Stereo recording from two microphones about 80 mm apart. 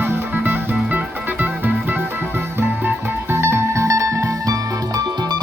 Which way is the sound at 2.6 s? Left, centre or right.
Right.